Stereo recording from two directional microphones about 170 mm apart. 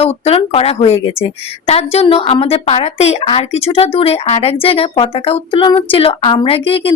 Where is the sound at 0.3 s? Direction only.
35° left (ahead or behind).